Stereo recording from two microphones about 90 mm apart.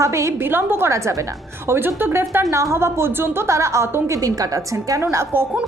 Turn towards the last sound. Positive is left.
turn(degrees=-30)  # may be behind; listen again after turning